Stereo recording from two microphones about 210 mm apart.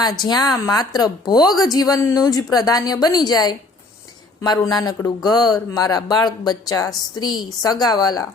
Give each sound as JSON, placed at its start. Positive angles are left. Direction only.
{"t": 0.2, "sound": "a woman's voice", "side_deg": 20}